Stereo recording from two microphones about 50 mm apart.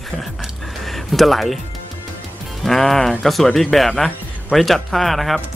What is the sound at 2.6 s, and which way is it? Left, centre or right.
Speech, centre.